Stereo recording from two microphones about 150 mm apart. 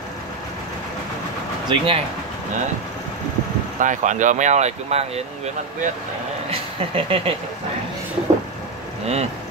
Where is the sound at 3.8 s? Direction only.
55° right (ahead or behind).